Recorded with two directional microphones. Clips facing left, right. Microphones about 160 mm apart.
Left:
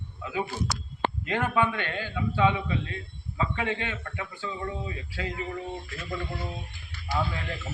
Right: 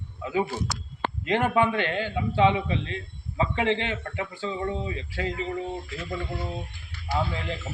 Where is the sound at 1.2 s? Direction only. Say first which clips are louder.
Right 5 dB; 25° right (ahead or behind).